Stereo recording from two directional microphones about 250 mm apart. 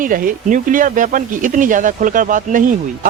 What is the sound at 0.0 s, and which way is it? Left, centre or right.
Speech, right.